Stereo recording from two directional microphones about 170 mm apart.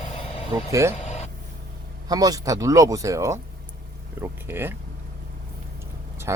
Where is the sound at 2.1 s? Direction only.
20° right (ahead or behind).